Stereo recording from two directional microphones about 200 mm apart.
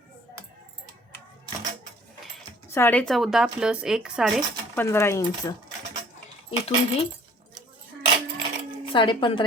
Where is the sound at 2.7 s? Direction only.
10° left (ahead or behind).